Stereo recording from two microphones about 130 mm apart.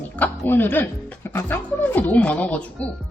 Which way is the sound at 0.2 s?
15° left (ahead or behind).